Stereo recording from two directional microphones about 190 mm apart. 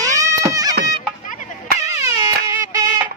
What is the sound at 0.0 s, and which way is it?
Music, 15° right (ahead or behind).